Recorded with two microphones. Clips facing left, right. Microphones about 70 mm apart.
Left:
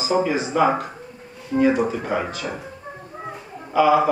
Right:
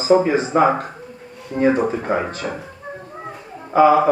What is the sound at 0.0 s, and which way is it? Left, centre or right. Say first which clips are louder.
Speech: right 5 dB; right.